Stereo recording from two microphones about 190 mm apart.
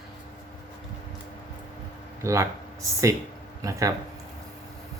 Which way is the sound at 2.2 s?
15° right (ahead or behind).